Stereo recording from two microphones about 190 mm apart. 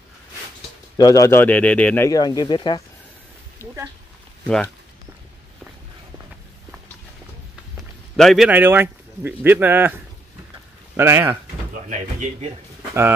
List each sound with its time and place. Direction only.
0.9 s speech: 20° left (ahead or behind)
8.2 s speech: centre (ahead or behind)
11.0 s speech: 15° right (ahead or behind)
11.9 s speech: 35° right (ahead or behind)